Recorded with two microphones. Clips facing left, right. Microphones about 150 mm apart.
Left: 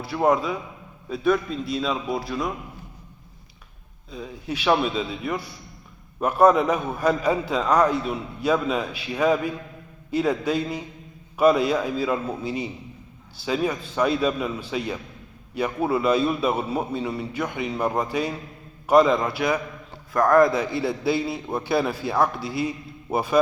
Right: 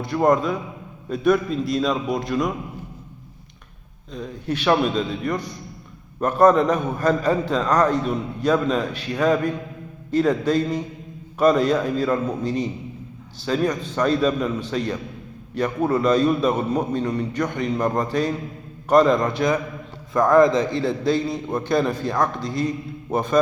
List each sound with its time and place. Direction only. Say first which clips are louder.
0.0 s a man's voice: right 3 dB; 5° left (ahead or behind)
4.1 s a man's voice: right 4 dB; 10° left (ahead or behind)